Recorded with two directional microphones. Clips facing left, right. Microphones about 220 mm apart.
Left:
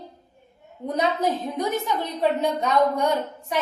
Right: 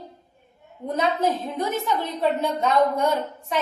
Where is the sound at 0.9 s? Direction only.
15° left (ahead or behind).